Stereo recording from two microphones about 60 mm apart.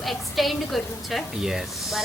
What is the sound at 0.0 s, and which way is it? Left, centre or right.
A woman's voice, centre.